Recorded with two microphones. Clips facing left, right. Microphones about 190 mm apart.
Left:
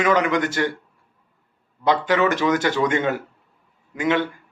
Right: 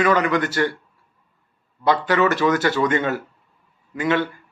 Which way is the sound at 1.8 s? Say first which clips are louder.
Right 1 dB; 15° left (ahead or behind).